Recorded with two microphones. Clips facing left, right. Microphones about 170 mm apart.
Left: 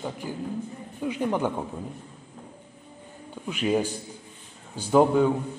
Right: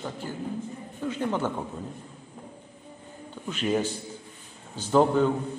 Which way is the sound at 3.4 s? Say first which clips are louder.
Left 2 dB; 10° left (ahead or behind).